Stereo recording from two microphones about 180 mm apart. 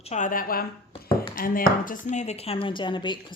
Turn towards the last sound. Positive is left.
turn(degrees=25)  # may be behind; listen again after turning